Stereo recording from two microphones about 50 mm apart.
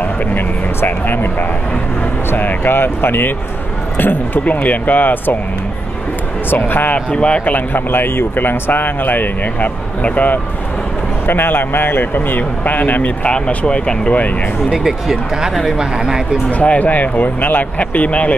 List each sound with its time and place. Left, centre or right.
0.3 s vehicle: left
2.3 s speech: left
6.5 s speech: left
7.1 s speech: left
7.5 s speech: left
11.2 s speech: left
14.7 s speech: centre
16.4 s speech: left